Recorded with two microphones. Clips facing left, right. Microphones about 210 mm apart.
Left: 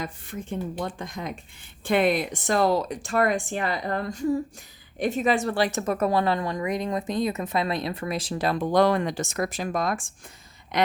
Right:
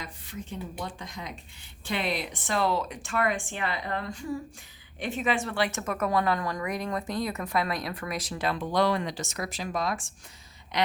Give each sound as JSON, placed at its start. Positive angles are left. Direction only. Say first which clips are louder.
{"t": 0.0, "sound": "a woman's voice", "louder": "left 6 dB", "side_deg": 50}